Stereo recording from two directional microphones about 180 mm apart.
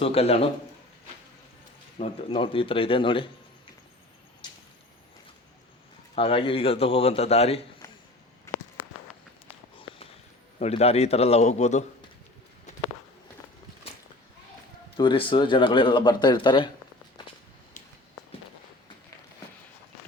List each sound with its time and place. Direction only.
0.0 s a man's voice: 35° left (ahead or behind)
2.0 s speech: 35° left (ahead or behind)
6.1 s a man's voice: 30° left (ahead or behind)
10.6 s a man's voice: 35° left (ahead or behind)
14.9 s speech: 25° left (ahead or behind)